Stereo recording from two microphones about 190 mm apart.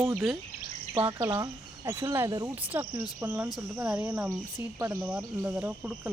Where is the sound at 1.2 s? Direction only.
20° right (ahead or behind).